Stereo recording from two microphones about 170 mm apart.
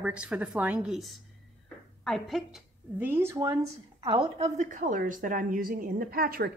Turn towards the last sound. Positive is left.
turn(degrees=-60)  # may be behind; listen again after turning